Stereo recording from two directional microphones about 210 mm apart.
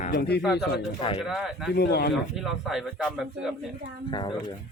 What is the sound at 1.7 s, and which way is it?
Speech, 50° left (ahead or behind).